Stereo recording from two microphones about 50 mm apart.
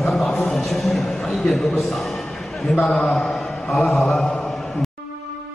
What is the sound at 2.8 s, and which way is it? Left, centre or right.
A man's voice, centre.